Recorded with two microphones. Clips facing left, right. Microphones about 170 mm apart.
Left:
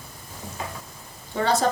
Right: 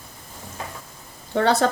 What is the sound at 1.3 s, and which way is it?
Speech, 65° right (ahead or behind).